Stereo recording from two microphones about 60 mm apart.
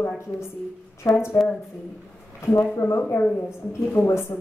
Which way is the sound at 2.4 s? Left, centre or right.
Left.